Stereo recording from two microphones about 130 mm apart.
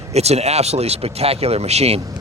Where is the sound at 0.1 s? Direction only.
55° right (ahead or behind).